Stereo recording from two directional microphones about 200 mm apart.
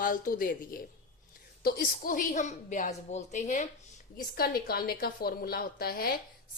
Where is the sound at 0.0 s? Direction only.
45° left (ahead or behind).